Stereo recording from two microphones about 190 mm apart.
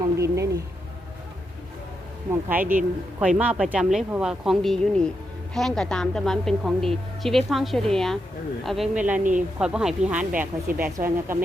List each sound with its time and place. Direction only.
0.2 s music: 15° right (ahead or behind)
2.3 s a woman's voice: 10° right (ahead or behind)
9.1 s speech: 40° right (ahead or behind)
9.6 s speech: 5° right (ahead or behind)